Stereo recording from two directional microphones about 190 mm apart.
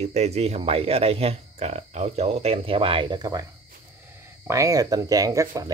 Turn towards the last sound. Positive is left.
turn(degrees=-15)  # may be behind; listen again after turning